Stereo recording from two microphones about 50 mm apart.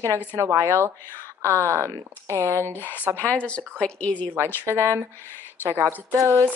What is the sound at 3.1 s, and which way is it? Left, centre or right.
Speech, left.